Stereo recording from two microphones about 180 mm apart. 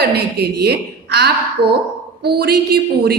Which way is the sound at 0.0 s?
65° right (ahead or behind).